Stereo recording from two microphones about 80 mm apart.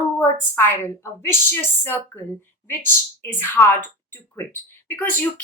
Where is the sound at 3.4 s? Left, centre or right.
Left.